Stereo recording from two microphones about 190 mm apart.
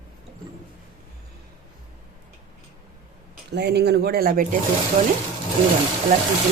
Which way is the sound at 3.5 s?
60° right (ahead or behind).